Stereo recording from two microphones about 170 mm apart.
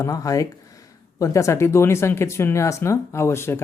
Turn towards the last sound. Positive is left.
turn(degrees=15)  # may be behind; listen again after turning